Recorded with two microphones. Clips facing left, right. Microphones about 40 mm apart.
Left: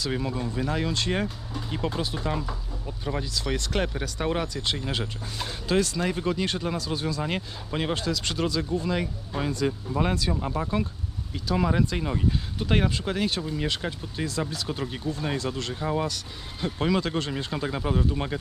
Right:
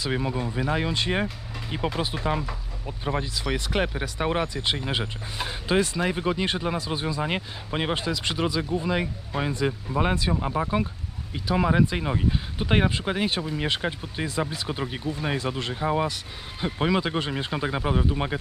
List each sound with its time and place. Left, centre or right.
0.0 s speech: centre